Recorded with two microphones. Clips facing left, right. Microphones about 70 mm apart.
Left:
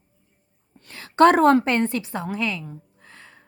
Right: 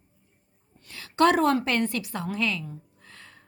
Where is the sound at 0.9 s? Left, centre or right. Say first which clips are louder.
Left 6 dB; left.